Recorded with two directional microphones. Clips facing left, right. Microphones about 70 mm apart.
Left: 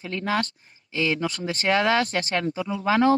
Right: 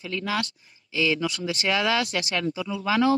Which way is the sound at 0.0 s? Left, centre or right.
Left.